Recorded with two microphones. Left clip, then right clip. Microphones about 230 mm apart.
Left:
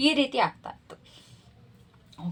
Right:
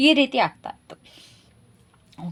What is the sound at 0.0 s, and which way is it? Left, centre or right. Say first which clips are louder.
Speech: right 5 dB; right.